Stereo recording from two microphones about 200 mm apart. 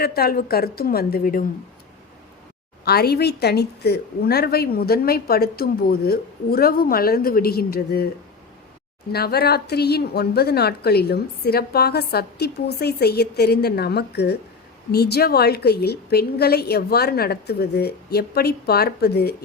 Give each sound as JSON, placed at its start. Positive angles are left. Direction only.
{"t": 0.0, "sound": "a woman's voice", "side_deg": 50}
{"t": 2.8, "sound": "a woman's voice", "side_deg": 50}
{"t": 9.1, "sound": "a woman's voice", "side_deg": 50}